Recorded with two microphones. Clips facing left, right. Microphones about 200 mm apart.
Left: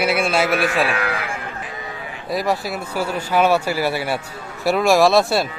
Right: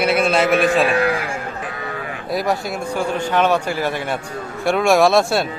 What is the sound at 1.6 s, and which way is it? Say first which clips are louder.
Sheep: right 4 dB; 65° right (ahead or behind).